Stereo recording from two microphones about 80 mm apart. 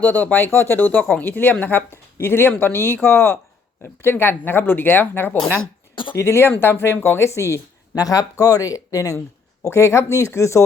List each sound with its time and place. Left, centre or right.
0.0 s speech: centre; by 9.2 s left
9.6 s speech: left